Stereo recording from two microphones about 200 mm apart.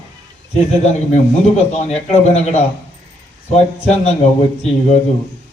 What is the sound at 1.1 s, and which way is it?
Speech, 30° left (ahead or behind).